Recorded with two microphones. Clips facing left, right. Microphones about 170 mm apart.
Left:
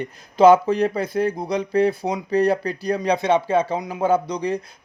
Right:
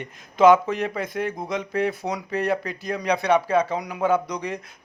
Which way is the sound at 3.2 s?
25° left (ahead or behind).